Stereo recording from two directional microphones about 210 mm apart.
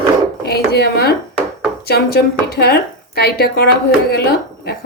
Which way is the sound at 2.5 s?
50° left (ahead or behind).